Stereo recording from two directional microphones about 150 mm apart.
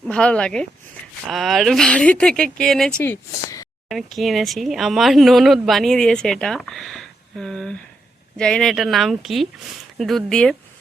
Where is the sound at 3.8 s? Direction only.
Centre (ahead or behind).